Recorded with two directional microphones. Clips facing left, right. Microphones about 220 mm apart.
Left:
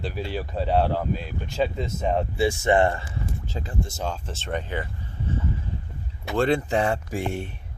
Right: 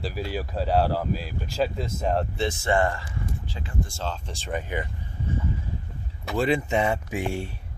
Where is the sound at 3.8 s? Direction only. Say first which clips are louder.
Left 2 dB; 15° left (ahead or behind).